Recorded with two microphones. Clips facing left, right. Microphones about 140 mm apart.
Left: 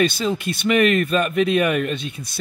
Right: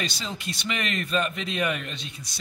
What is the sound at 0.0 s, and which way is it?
Speech, 55° left (ahead or behind).